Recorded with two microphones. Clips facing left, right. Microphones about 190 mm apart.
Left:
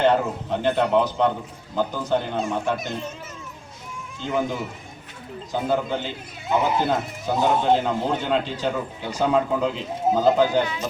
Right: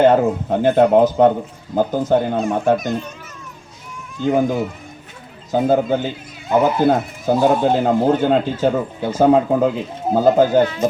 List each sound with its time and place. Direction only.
0.0 s speech: 45° right (ahead or behind)
4.2 s speech: 50° right (ahead or behind)